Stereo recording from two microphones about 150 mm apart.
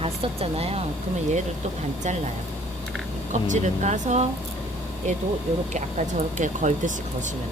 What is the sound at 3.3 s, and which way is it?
Speech, 55° right (ahead or behind).